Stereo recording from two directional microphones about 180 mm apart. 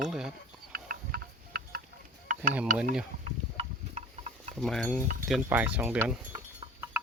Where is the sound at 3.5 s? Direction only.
35° right (ahead or behind).